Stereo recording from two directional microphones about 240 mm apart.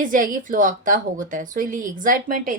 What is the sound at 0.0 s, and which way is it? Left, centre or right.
Speech, right.